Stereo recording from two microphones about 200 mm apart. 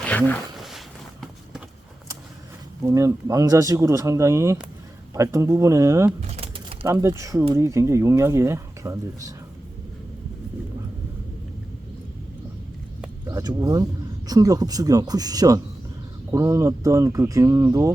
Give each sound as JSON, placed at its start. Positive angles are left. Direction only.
{"t": 0.0, "sound": "a sound", "side_deg": 5}
{"t": 2.8, "sound": "speech", "side_deg": -15}
{"t": 6.2, "sound": "typing", "side_deg": -30}
{"t": 6.8, "sound": "speech", "side_deg": -15}
{"t": 13.2, "sound": "speech", "side_deg": -20}